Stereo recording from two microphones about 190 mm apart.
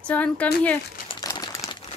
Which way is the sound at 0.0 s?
5° left (ahead or behind).